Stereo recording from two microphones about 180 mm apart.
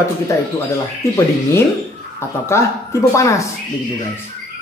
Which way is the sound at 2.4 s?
15° left (ahead or behind).